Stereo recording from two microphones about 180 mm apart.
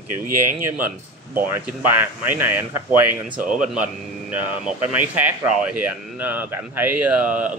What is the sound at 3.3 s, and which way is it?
Speech, 50° right (ahead or behind).